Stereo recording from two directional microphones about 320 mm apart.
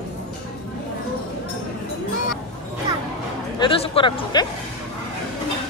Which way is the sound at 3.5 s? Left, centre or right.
Centre.